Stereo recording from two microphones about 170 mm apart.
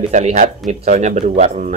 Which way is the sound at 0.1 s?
45° right (ahead or behind).